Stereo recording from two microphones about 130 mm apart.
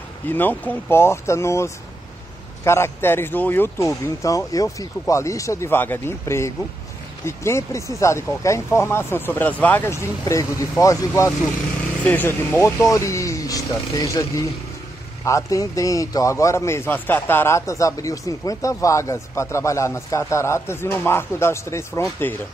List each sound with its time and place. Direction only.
0.3 s speech: 15° left (ahead or behind)
15.2 s speech: 25° left (ahead or behind)